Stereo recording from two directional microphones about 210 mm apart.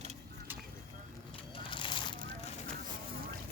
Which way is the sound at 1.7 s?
25° left (ahead or behind).